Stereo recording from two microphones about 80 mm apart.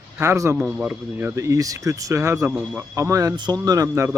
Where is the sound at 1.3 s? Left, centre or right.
Right.